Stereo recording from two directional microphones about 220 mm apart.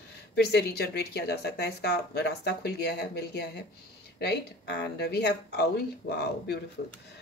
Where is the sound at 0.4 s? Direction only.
45° left (ahead or behind).